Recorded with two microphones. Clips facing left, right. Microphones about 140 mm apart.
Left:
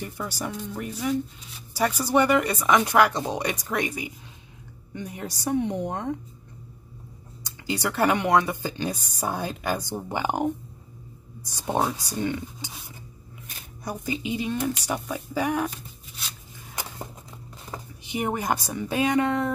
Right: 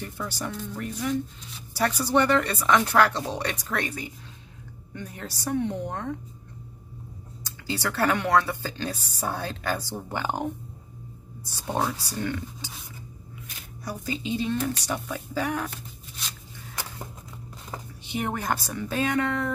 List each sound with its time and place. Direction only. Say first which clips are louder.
0.0 s speech: left 1 dB; 10° left (ahead or behind)
7.4 s speech: left 2 dB; 15° left (ahead or behind)
13.8 s speech: left 1 dB; 20° left (ahead or behind)
18.1 s speech: left 2 dB; 15° left (ahead or behind)